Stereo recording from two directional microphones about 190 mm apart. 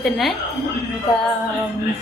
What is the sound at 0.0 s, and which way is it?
Speech, centre (ahead or behind).